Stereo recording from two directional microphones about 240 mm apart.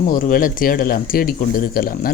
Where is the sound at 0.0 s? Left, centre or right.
Left.